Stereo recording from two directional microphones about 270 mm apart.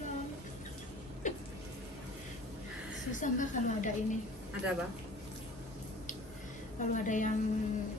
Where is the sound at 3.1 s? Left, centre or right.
Left.